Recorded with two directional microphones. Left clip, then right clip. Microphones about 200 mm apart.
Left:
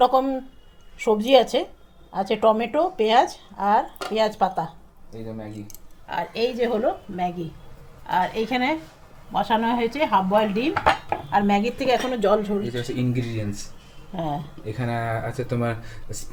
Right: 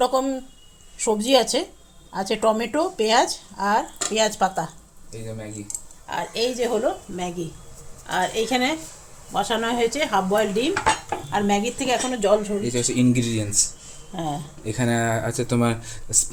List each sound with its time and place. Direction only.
0.0 s speech: centre (ahead or behind)
6.1 s speech: 5° right (ahead or behind)
13.0 s speech: 50° right (ahead or behind)
14.1 s speech: centre (ahead or behind)
14.6 s speech: 50° right (ahead or behind)